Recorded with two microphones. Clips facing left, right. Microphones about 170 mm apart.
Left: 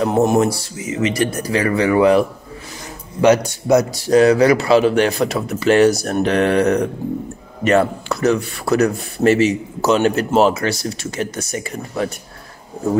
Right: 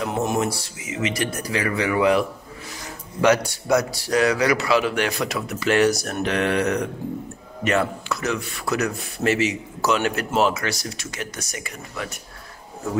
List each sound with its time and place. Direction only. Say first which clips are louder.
0.0 s speech: left 8 dB; 40° left (ahead or behind)
3.2 s speech: left 5 dB; 20° left (ahead or behind)